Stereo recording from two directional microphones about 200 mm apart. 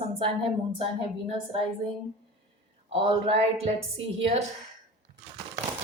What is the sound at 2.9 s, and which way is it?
Speech, 25° right (ahead or behind).